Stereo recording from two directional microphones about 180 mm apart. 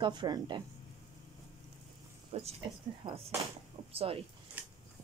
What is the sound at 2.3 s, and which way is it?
A woman's voice, 35° right (ahead or behind).